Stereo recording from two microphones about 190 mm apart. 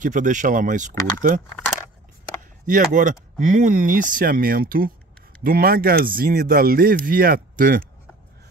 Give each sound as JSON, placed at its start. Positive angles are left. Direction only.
{"t": 0.0, "sound": "speech", "side_deg": -45}
{"t": 2.6, "sound": "speech", "side_deg": -45}